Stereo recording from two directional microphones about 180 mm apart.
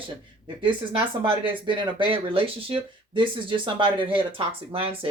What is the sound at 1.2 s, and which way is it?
Speech, 30° right (ahead or behind).